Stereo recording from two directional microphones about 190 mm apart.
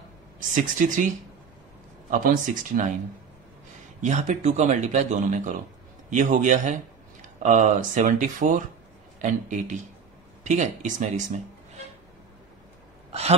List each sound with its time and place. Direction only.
0.4 s speech: 45° right (ahead or behind)
2.0 s speech: 45° right (ahead or behind)
4.0 s speech: 40° right (ahead or behind)